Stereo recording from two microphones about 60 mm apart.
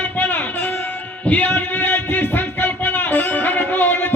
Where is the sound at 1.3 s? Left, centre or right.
Left.